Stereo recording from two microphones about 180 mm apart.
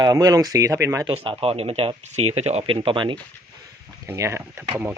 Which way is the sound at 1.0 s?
30° right (ahead or behind).